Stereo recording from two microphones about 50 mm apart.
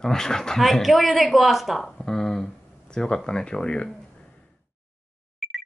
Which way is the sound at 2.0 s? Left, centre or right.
Centre.